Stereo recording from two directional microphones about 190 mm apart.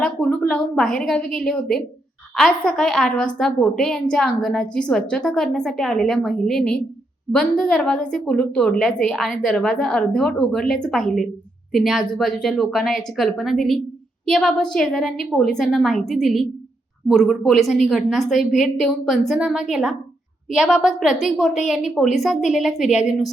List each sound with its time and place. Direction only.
0.0 s a woman's voice: 5° left (ahead or behind)
1.2 s a woman's voice: 50° left (ahead or behind)
1.5 s a woman's voice: 5° left (ahead or behind)